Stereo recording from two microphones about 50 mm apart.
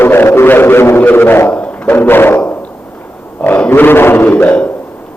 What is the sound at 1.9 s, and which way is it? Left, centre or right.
Speech, left.